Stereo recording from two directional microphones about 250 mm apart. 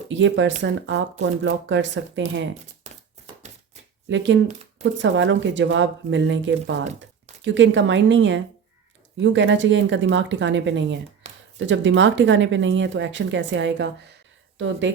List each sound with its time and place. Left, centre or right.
0.1 s speech: right
4.1 s speech: right
11.2 s a sound: right
11.6 s speech: right